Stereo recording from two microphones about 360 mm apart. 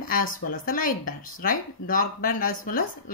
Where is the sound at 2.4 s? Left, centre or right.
Left.